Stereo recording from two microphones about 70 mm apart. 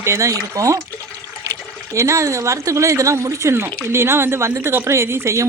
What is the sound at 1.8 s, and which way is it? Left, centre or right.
Speech, right.